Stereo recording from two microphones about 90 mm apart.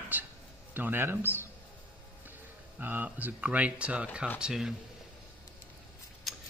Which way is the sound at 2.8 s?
20° right (ahead or behind).